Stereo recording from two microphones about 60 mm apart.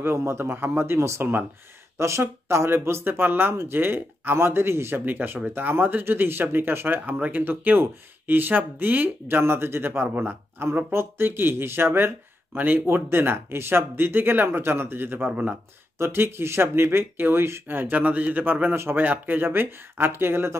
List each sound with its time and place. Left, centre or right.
0.0 s speech: right
9.4 s speech: right
10.6 s speech: right
15.2 s speech: right
16.0 s speech: right